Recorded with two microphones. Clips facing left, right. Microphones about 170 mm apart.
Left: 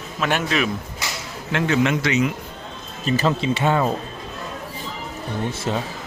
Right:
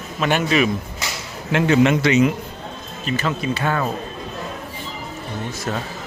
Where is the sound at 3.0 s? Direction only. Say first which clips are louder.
Left 3 dB; 35° left (ahead or behind).